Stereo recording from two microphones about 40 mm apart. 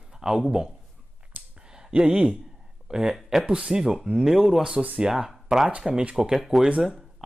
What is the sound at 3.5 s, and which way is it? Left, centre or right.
Speech, centre.